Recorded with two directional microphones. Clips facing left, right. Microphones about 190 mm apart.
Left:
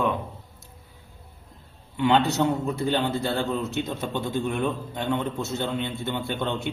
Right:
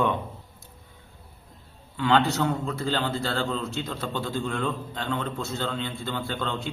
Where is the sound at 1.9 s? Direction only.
20° left (ahead or behind).